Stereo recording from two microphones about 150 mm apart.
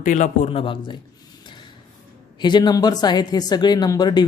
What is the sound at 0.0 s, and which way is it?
Speech, 55° left (ahead or behind).